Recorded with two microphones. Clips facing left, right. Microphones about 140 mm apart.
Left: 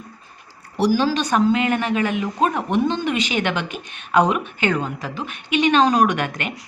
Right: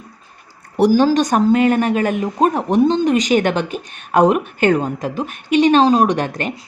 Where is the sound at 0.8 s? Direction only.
45° right (ahead or behind).